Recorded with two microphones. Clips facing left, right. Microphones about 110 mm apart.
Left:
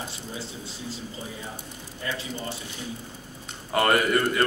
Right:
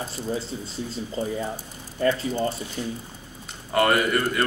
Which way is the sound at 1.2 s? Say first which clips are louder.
Right 10 dB; 45° right (ahead or behind).